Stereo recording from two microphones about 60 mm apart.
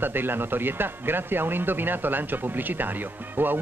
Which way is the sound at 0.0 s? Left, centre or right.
Right.